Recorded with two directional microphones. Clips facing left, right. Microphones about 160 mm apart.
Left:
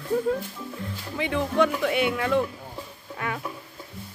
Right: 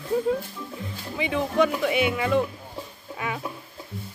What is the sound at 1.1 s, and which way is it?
Speech, 10° right (ahead or behind).